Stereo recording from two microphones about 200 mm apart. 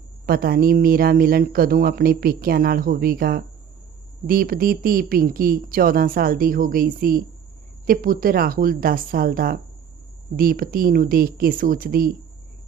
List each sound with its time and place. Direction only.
0.3 s speech: 50° right (ahead or behind)